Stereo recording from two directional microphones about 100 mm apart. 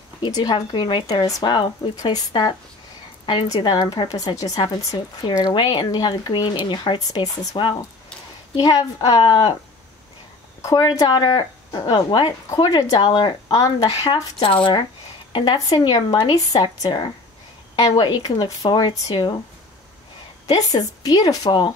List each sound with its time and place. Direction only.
0.2 s speech: 40° left (ahead or behind)
1.2 s a woman's voice: 35° left (ahead or behind)
1.5 s a woman's voice: 50° left (ahead or behind)
5.4 s speech: 45° left (ahead or behind)
8.5 s speech: 40° left (ahead or behind)
10.6 s speech: 40° left (ahead or behind)
14.4 s speech: 55° left (ahead or behind)
20.4 s a woman's voice: 40° left (ahead or behind)